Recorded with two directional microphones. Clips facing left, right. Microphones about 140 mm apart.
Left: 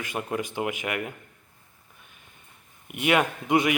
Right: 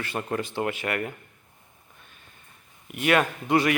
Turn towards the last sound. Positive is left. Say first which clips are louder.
# even
turn(degrees=15)  # may be behind; listen again after turning